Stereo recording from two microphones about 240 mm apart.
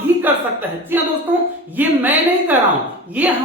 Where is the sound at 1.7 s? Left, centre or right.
Centre.